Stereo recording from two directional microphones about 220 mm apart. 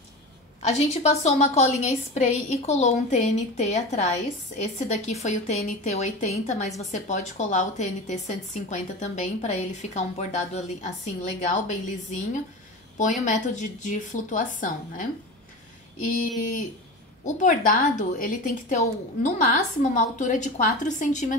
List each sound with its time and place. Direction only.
0.6 s a woman's voice: 30° left (ahead or behind)
17.4 s a woman's voice: 35° left (ahead or behind)